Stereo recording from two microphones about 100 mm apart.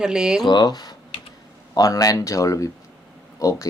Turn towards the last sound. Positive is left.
turn(degrees=35)  # may be behind; listen again after turning